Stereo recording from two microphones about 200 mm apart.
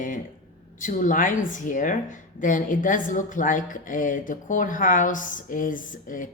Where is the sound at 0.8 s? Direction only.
40° left (ahead or behind).